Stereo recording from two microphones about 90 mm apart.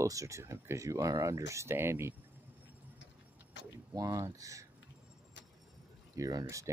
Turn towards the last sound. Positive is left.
turn(degrees=-35)  # may be behind; listen again after turning